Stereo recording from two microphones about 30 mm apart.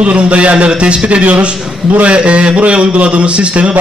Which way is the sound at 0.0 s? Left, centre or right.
Right.